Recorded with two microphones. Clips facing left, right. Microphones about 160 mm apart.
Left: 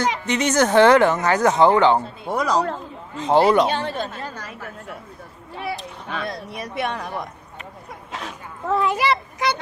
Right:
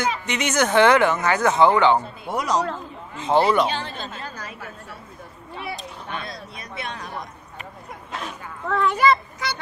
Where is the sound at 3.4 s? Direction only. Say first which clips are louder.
Left 3 dB; 40° left (ahead or behind); by 6.4 s 60° left (ahead or behind).